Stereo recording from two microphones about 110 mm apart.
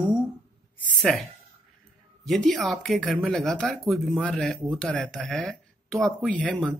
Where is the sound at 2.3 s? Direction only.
Centre (ahead or behind).